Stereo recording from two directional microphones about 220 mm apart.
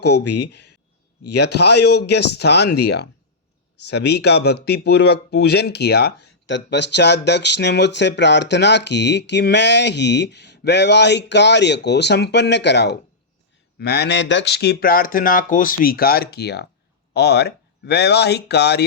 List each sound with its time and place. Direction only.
0.2 s speech: 50° left (ahead or behind)